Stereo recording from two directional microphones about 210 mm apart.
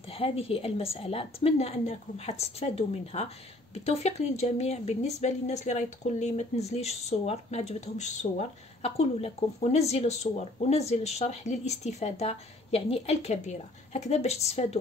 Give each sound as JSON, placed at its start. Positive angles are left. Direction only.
{"t": 0.1, "sound": "a woman's voice", "side_deg": 25}